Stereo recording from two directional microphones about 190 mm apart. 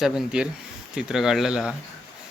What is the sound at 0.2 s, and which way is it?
A man's voice, 5° right (ahead or behind).